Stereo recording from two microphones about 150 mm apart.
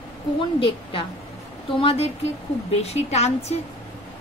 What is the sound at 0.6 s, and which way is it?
A woman's voice, 35° left (ahead or behind).